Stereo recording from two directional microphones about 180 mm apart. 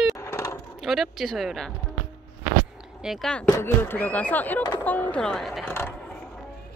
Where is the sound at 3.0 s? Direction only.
Centre (ahead or behind).